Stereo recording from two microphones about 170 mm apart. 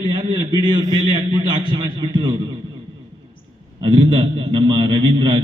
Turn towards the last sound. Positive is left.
turn(degrees=-25)  # may be behind; listen again after turning